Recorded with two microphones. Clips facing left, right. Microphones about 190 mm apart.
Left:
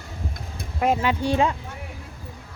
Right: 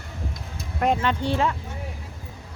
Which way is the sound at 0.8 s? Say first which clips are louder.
Left 1 dB; 5° left (ahead or behind).